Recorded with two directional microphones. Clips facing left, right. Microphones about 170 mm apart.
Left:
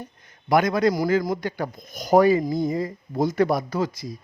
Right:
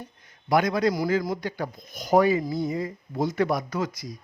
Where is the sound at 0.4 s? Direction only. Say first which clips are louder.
Left 3 dB; 50° left (ahead or behind).